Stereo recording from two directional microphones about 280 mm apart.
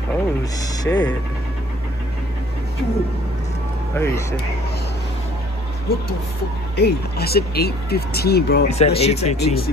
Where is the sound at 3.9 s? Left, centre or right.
Centre.